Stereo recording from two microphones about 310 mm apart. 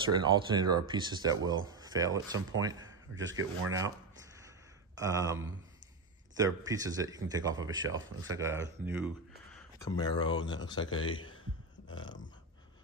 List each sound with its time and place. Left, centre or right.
0.0 s speech: centre
2.8 s speech: right
4.9 s speech: centre
9.8 s speech: centre
11.9 s a sound: centre